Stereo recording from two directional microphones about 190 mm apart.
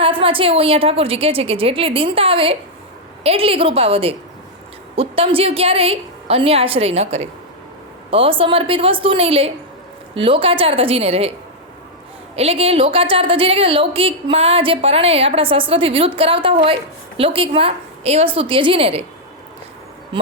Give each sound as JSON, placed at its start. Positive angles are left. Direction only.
{"t": 0.0, "sound": "a woman's voice", "side_deg": -30}
{"t": 12.4, "sound": "a woman's voice", "side_deg": -30}